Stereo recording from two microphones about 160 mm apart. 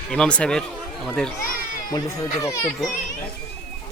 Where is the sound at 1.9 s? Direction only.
20° left (ahead or behind).